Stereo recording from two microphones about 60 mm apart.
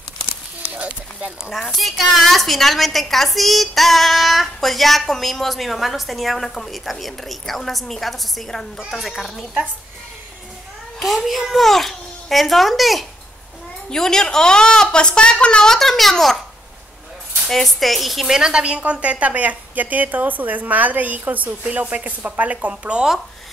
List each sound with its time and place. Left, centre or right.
0.7 s speech: right
1.5 s a woman's voice: centre
11.0 s a woman's voice: centre
17.5 s a woman's voice: centre